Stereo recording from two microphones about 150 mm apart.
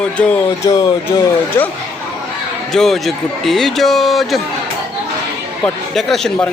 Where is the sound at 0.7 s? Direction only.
25° left (ahead or behind).